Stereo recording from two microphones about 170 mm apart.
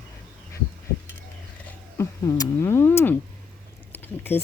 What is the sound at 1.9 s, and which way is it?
A woman's voice, 20° left (ahead or behind).